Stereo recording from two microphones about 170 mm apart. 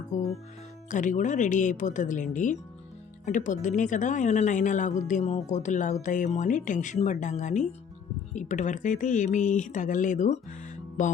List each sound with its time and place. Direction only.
0.1 s speech: 50° left (ahead or behind)